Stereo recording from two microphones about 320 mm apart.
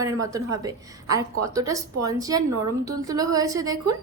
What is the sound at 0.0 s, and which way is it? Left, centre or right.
A woman's voice, centre.